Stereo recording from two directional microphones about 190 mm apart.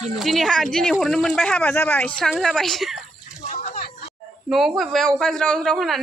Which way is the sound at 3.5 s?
45° left (ahead or behind).